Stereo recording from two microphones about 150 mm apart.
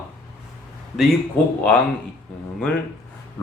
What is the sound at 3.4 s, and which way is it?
Speech, 15° left (ahead or behind).